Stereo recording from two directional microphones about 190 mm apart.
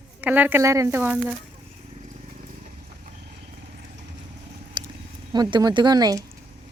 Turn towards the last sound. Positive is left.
turn(degrees=-20)  # may be behind; listen again after turning